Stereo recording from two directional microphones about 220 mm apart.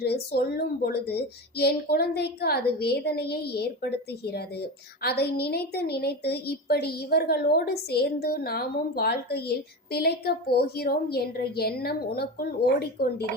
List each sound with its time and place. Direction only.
0.0 s speech: 45° left (ahead or behind)